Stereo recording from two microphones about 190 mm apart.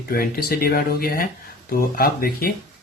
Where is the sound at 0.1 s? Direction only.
50° left (ahead or behind).